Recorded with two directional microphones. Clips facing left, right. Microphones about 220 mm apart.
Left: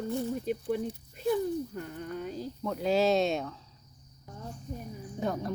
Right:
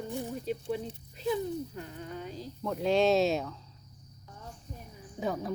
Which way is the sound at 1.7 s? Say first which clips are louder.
Left 3 dB; 50° left (ahead or behind).